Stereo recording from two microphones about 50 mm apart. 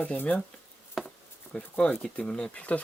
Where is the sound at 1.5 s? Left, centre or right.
Left.